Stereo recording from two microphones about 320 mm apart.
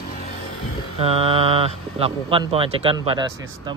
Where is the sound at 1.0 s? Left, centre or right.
Centre.